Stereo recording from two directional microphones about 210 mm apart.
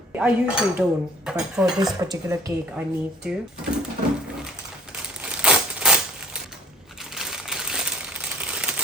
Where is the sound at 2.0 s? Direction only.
15° right (ahead or behind).